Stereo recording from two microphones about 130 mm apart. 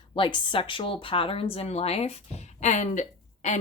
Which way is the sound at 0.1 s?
40° left (ahead or behind).